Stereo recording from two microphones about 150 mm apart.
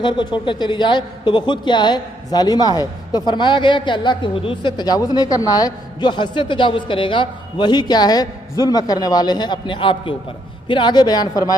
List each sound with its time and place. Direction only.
0.0 s a man's voice: 30° left (ahead or behind)